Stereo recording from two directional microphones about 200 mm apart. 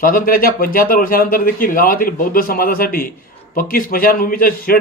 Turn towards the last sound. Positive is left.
turn(degrees=45)  # may be behind; listen again after turning